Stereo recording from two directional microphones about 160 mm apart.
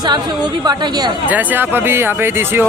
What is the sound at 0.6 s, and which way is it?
Speech, 25° right (ahead or behind).